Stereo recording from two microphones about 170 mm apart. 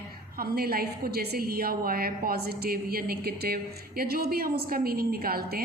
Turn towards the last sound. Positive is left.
turn(degrees=-65)  # may be behind; listen again after turning